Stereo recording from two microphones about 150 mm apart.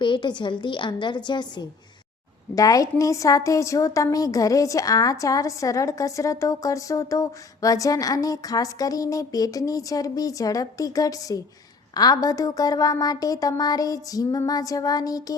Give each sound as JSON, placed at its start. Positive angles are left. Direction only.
{"t": 0.0, "sound": "a woman's voice", "side_deg": 30}